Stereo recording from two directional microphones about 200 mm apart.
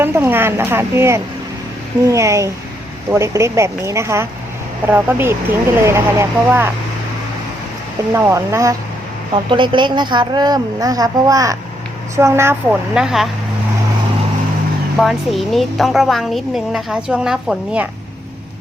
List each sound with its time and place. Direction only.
0.0 s speech: 10° right (ahead or behind)
8.1 s a woman's voice: 15° right (ahead or behind)
14.9 s a woman's voice: centre (ahead or behind)